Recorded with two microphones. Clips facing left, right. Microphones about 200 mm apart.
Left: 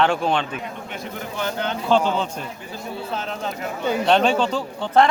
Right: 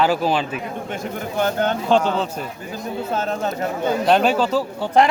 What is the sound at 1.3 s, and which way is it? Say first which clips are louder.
Speech: right 6 dB; 50° right (ahead or behind).